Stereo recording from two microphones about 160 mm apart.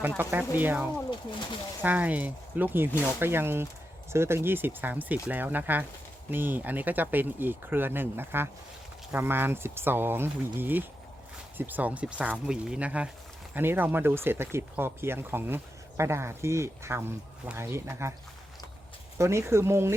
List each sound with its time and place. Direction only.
0.2 s speech: 15° right (ahead or behind)
19.2 s speech: 15° right (ahead or behind)